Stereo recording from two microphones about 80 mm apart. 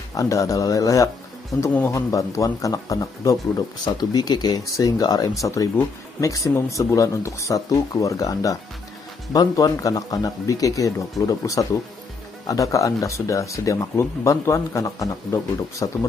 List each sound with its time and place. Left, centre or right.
0.1 s speech: left
3.8 s speech: left